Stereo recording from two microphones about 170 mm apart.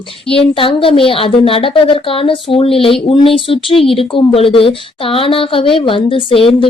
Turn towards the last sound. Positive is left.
turn(degrees=30)  # may be behind; listen again after turning